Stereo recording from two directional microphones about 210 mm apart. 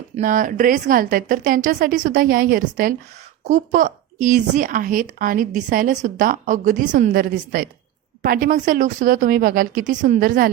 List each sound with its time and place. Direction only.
0.2 s speech: 40° right (ahead or behind)